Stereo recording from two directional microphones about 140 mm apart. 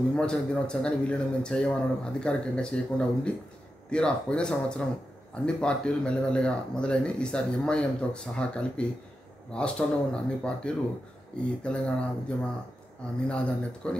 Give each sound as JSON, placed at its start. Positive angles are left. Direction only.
{"t": 0.1, "sound": "speech", "side_deg": 5}